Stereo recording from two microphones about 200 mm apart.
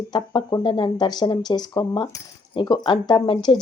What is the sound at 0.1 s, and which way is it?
Speech, 20° left (ahead or behind).